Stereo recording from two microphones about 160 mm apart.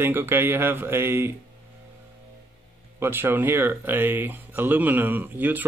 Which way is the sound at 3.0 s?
15° right (ahead or behind).